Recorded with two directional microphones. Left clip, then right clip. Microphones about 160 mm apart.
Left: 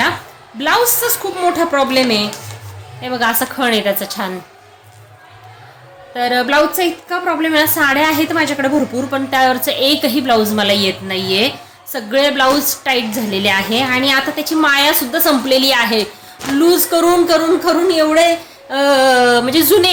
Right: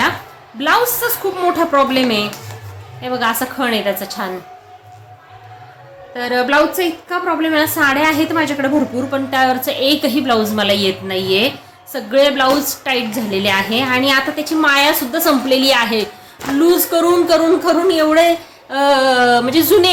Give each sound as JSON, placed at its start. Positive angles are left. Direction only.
{"t": 0.6, "sound": "a woman's voice", "side_deg": 15}
{"t": 3.0, "sound": "a woman's voice", "side_deg": 25}
{"t": 6.1, "sound": "a woman's voice", "side_deg": 25}